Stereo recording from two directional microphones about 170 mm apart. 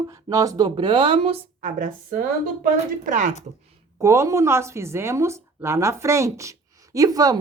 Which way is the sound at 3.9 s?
20° right (ahead or behind).